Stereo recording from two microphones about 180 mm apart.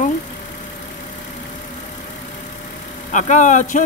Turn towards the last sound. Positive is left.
turn(degrees=45)  # may be behind; listen again after turning